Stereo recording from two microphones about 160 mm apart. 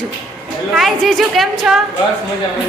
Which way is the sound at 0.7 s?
Centre (ahead or behind).